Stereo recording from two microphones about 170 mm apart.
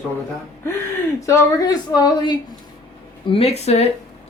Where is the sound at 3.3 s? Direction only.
35° left (ahead or behind).